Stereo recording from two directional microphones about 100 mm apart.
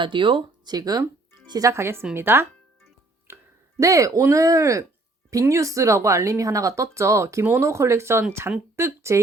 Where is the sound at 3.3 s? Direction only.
20° right (ahead or behind).